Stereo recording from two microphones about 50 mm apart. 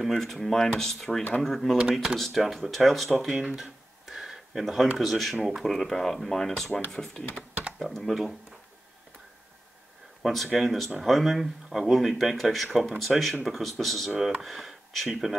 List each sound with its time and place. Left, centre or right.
0.0 s speech: centre
1.8 s speech: centre
2.1 s speech: centre
7.8 s speech: centre
10.2 s speech: centre